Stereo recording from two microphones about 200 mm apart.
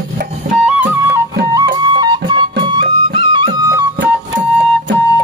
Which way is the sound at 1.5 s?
20° right (ahead or behind).